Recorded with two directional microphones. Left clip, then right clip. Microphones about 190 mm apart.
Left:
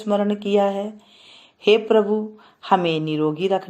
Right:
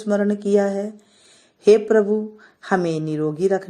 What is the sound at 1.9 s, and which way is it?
A woman's voice, 35° right (ahead or behind).